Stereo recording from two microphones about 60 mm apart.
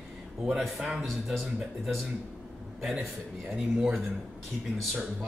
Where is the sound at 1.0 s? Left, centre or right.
Centre.